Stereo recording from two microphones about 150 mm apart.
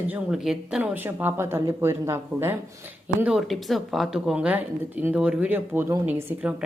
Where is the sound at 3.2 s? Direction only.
5° right (ahead or behind).